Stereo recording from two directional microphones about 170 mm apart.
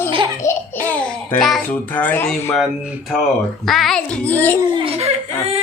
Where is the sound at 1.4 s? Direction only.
5° left (ahead or behind).